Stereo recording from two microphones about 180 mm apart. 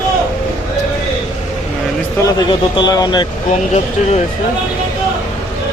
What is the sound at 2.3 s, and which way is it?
Speech, 25° left (ahead or behind).